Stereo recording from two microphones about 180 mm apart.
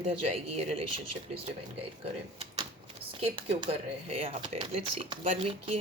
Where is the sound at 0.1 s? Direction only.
35° right (ahead or behind).